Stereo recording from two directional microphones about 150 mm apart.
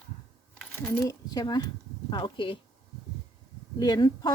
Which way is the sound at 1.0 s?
25° left (ahead or behind).